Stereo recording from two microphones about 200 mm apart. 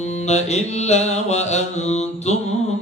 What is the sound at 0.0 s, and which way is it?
Mantra, 35° left (ahead or behind).